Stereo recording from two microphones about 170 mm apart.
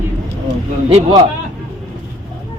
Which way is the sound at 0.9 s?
30° right (ahead or behind).